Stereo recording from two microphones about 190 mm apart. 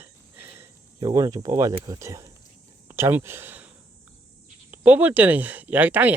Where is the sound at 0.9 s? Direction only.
20° right (ahead or behind).